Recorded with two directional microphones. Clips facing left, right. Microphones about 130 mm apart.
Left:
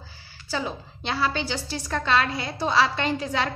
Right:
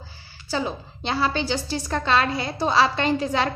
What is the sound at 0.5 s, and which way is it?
A woman's voice, 25° right (ahead or behind).